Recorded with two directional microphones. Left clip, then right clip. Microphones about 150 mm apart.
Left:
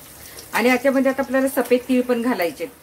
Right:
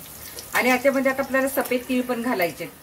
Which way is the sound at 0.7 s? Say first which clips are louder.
Left 3 dB; 55° left (ahead or behind).